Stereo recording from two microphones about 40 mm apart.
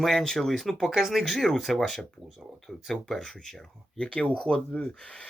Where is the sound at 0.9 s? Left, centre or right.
Centre.